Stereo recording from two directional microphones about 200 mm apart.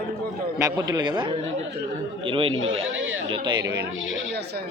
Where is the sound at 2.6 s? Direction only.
80° right.